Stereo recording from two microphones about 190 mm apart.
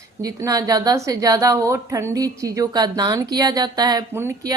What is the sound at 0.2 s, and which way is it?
A woman's voice, 20° right (ahead or behind).